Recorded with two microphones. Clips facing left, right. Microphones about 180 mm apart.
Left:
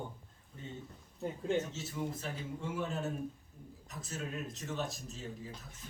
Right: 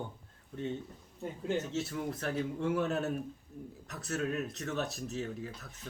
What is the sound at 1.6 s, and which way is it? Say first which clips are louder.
Speech: right 3 dB; 70° right (ahead or behind).